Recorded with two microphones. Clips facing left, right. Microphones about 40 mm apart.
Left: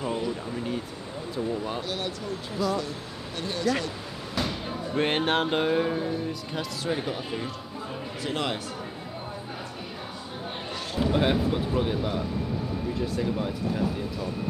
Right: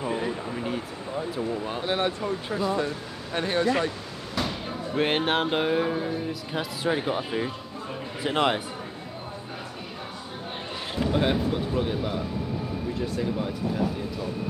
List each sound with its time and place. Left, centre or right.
0.1 s a sound: right
1.3 s music: centre
1.8 s speech: right
4.4 s music: centre
8.2 s speech: right
11.0 s speech: centre